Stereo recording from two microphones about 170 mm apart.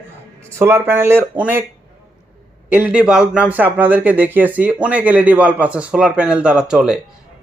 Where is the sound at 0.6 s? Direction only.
15° right (ahead or behind).